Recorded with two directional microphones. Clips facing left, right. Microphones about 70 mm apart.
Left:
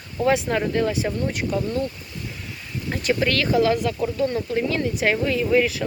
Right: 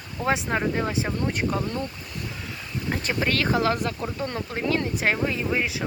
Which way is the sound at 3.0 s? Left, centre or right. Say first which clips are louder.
Left 4 dB; right.